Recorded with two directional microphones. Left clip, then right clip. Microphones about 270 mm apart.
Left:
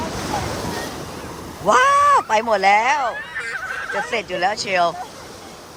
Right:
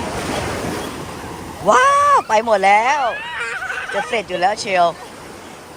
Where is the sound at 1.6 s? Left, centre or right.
Centre.